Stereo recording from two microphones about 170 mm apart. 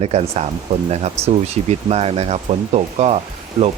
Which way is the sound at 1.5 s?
40° right (ahead or behind).